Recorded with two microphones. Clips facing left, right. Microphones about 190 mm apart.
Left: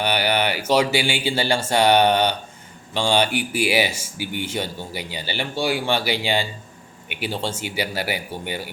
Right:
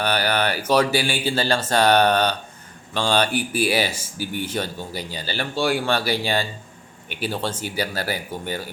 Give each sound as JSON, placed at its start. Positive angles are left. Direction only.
{"t": 0.0, "sound": "speech", "side_deg": 10}